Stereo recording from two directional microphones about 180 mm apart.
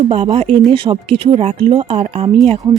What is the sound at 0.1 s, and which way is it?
Speech, 35° right (ahead or behind).